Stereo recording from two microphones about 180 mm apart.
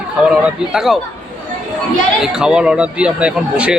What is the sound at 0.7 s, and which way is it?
Speech, 5° right (ahead or behind).